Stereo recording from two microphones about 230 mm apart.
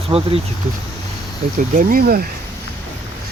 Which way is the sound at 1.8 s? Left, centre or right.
Right.